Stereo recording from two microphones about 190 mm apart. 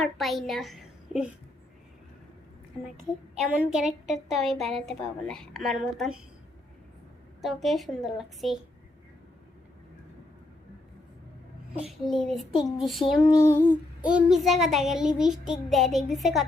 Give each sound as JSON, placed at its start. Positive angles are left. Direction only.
{"t": 0.0, "sound": "a child's voice", "side_deg": 0}
{"t": 3.4, "sound": "a woman's voice", "side_deg": -5}
{"t": 7.4, "sound": "a woman's voice", "side_deg": 0}
{"t": 11.7, "sound": "a woman's voice", "side_deg": 0}
{"t": 13.3, "sound": "female singing", "side_deg": 15}
{"t": 14.0, "sound": "a woman's voice", "side_deg": -5}